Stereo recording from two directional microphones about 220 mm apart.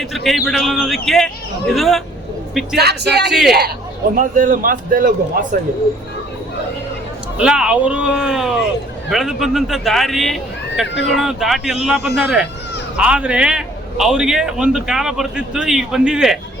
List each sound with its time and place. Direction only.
0.0 s a man's voice: centre (ahead or behind)
2.7 s speech: 50° right (ahead or behind)
3.2 s a man's voice: centre (ahead or behind)
4.1 s a man's voice: 40° right (ahead or behind)
7.3 s a man's voice: 5° right (ahead or behind)